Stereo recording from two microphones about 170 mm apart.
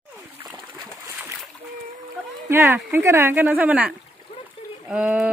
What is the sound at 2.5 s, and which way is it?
Speech, 15° right (ahead or behind).